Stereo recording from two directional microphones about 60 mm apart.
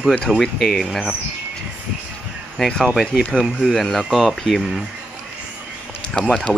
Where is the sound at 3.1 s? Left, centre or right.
Centre.